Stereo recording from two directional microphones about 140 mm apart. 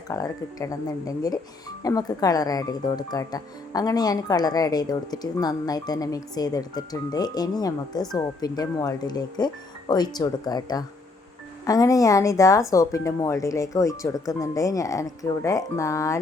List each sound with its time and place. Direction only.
0.1 s speech: 25° left (ahead or behind)